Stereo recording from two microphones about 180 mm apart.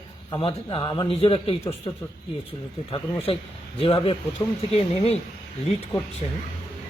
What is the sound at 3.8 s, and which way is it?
A man's voice, 30° left (ahead or behind).